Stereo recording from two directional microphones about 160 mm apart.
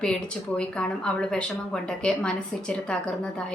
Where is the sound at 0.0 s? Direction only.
5° left (ahead or behind).